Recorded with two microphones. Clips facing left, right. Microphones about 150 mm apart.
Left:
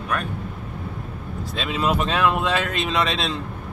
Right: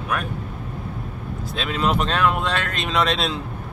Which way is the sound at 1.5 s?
5° left (ahead or behind).